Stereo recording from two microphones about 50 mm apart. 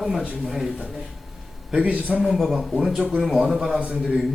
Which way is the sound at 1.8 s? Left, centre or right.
Right.